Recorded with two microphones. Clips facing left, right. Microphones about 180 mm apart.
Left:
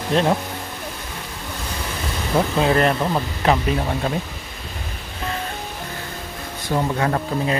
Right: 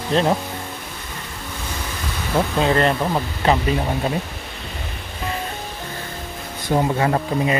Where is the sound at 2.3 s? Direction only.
5° left (ahead or behind).